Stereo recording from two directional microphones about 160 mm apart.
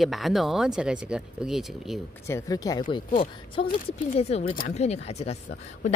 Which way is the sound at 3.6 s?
35° left (ahead or behind).